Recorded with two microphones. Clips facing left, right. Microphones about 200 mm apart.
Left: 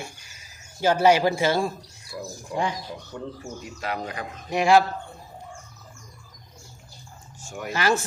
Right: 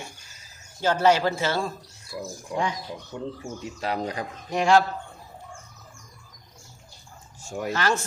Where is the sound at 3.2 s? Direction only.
15° right (ahead or behind).